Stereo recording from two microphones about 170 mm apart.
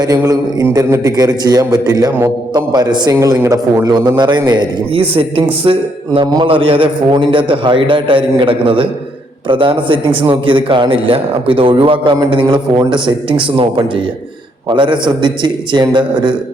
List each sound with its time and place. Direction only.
0.0 s a man's voice: 20° right (ahead or behind)